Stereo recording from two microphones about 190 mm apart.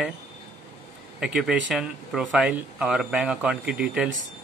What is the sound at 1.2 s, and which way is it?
Speech, 5° right (ahead or behind).